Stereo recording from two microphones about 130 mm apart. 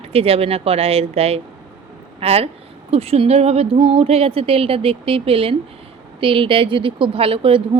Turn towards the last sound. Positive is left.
turn(degrees=-45)  # may be behind; listen again after turning